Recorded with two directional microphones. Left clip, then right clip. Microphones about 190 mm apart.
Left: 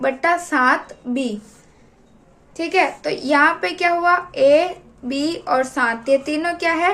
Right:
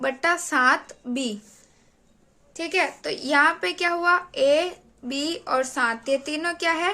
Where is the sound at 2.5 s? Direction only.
30° right (ahead or behind).